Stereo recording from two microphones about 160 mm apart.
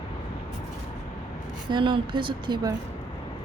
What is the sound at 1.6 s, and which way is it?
Speech, 30° right (ahead or behind).